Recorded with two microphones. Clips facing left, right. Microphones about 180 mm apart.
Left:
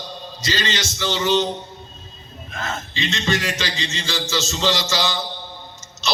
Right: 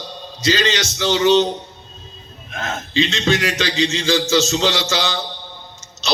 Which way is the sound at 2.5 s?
60° right (ahead or behind).